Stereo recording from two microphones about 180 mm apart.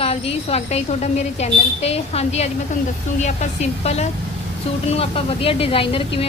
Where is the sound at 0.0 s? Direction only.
35° left (ahead or behind).